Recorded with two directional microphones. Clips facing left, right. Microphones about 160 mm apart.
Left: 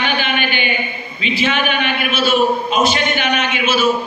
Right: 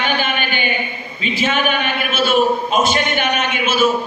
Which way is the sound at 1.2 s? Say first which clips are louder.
Even; 45° right (ahead or behind).